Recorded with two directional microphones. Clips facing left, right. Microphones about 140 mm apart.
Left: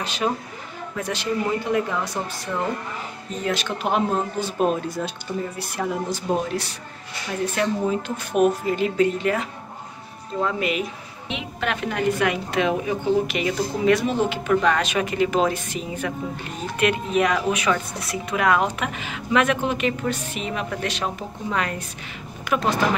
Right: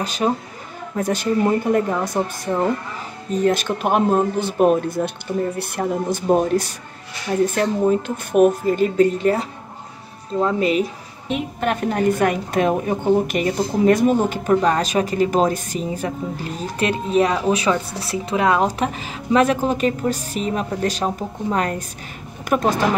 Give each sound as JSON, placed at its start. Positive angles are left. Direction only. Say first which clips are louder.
{"t": 0.0, "sound": "a woman's voice", "louder": "right 4 dB", "side_deg": -40}